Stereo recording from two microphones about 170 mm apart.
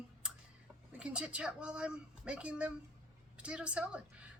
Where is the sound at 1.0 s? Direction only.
5° right (ahead or behind).